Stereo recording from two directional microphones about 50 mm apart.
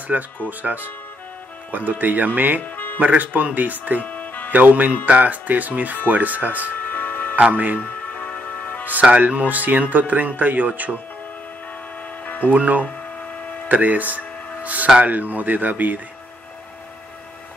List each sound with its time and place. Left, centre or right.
0.1 s speech: right
2.6 s music: left
3.0 s speech: right
4.0 s music: left
4.5 s speech: right
6.7 s music: left
7.3 s speech: right
7.8 s music: left
9.1 s speech: right
12.3 s music: left
12.5 s speech: right